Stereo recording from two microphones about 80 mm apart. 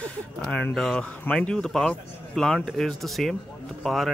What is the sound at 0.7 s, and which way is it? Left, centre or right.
A man's voice, centre.